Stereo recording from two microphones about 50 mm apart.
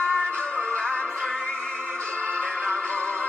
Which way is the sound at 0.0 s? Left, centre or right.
Left.